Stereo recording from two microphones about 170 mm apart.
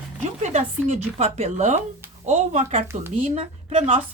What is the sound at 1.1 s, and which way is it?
A woman's voice, 40° right (ahead or behind).